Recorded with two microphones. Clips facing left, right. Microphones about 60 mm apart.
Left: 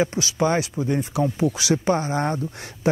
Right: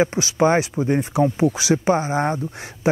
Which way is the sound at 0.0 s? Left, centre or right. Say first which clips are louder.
Right 4 dB; right.